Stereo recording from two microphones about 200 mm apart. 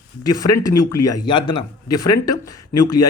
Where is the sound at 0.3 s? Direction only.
20° left (ahead or behind).